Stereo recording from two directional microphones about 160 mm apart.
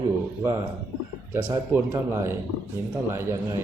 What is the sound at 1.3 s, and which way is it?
Speech, 20° right (ahead or behind).